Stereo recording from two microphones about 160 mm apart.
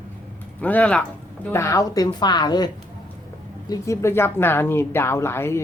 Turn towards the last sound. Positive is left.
turn(degrees=15)  # may be behind; listen again after turning